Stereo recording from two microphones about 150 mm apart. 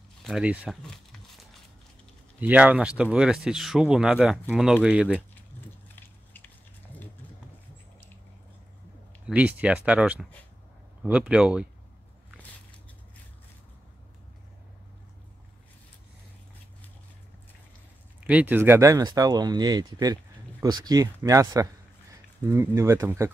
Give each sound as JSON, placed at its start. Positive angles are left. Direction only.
{"t": 0.2, "sound": "speech", "side_deg": -5}
{"t": 2.4, "sound": "speech", "side_deg": -10}
{"t": 9.2, "sound": "speech", "side_deg": -10}
{"t": 18.2, "sound": "speech", "side_deg": -10}